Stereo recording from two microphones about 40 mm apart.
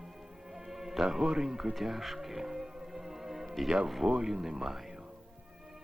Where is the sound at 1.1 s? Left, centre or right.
Centre.